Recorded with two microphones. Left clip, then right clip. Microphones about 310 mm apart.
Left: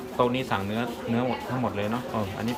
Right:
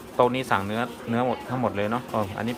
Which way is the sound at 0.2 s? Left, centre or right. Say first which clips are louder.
Right 4 dB; centre.